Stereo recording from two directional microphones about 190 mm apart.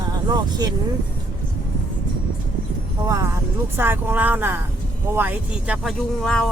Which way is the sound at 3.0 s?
15° right (ahead or behind).